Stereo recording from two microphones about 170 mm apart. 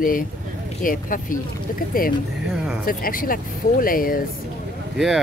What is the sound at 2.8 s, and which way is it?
Speech, 55° left (ahead or behind).